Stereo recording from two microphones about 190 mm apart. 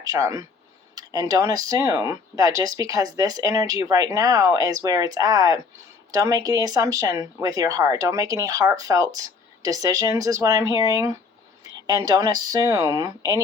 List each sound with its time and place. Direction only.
0.0 s speech: 20° right (ahead or behind)